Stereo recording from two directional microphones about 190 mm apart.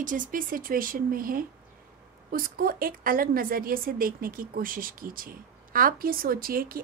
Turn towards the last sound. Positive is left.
turn(degrees=-50)  # may be behind; listen again after turning